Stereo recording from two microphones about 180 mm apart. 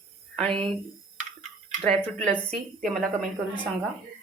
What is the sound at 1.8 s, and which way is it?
Speech, 10° left (ahead or behind).